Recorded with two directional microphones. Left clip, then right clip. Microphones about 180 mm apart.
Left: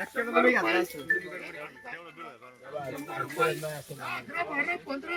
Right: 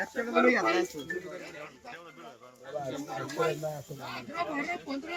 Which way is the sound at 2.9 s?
5° right (ahead or behind).